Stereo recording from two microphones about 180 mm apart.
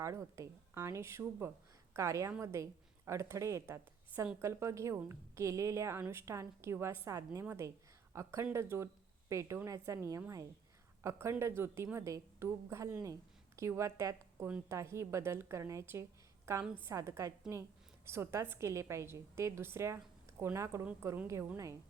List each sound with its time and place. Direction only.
0.0 s a woman's voice: 15° right (ahead or behind)